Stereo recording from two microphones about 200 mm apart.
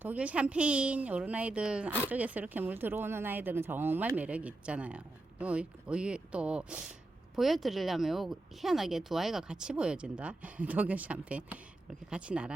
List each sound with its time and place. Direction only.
0.0 s speech: 5° right (ahead or behind)